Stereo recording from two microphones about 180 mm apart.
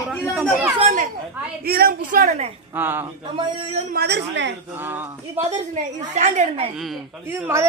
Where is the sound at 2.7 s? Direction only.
10° right (ahead or behind).